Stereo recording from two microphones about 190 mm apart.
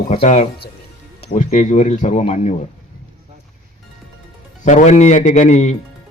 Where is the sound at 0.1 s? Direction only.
35° left (ahead or behind).